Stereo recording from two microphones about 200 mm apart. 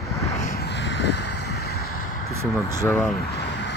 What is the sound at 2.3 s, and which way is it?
Vehicle, 15° right (ahead or behind).